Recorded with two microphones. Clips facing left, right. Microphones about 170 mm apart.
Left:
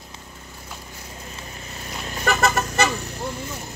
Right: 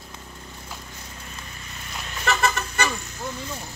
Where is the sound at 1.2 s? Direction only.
30° left (ahead or behind).